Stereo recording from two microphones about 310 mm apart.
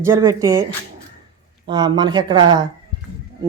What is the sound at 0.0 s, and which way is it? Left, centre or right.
Speech, centre.